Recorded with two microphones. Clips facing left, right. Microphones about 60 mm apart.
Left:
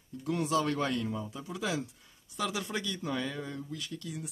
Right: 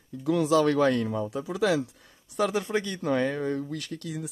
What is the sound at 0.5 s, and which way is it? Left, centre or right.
Speech, right.